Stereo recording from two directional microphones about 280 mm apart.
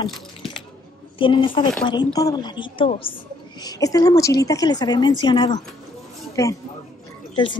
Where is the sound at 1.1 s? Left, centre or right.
Centre.